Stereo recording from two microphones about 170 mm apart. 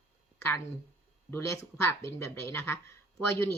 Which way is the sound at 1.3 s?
15° left (ahead or behind).